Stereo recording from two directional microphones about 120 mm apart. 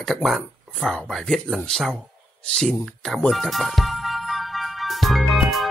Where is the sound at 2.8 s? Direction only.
5° left (ahead or behind).